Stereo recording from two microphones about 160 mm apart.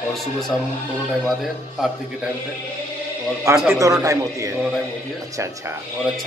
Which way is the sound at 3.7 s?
20° right (ahead or behind).